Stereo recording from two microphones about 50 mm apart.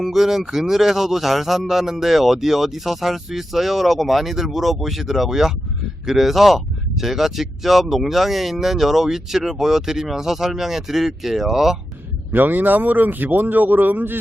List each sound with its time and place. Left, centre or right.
0.0 s speech: centre
12.3 s a man's voice: right